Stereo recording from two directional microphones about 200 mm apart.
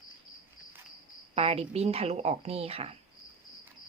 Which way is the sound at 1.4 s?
30° right (ahead or behind).